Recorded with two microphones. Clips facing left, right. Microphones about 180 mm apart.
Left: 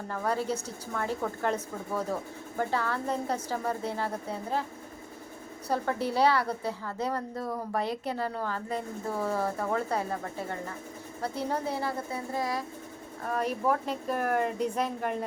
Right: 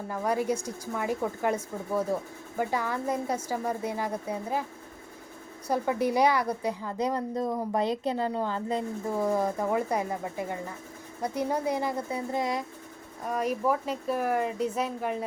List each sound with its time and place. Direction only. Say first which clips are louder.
0.1 s a woman's voice: right 2 dB; 10° right (ahead or behind)
5.6 s a woman's voice: right 3 dB; 10° right (ahead or behind)